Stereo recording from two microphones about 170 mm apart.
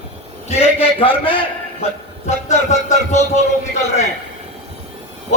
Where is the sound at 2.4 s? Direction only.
45° left (ahead or behind).